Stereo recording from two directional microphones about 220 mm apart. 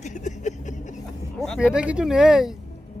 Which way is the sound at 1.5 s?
5° right (ahead or behind).